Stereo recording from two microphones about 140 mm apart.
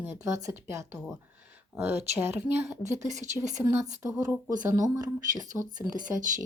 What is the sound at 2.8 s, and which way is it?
Speech, 55° right (ahead or behind).